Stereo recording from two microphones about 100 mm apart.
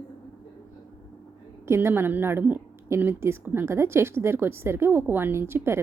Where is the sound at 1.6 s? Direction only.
25° right (ahead or behind).